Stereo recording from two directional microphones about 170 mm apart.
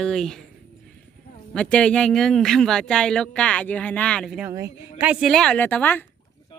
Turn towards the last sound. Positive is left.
turn(degrees=10)  # may be behind; listen again after turning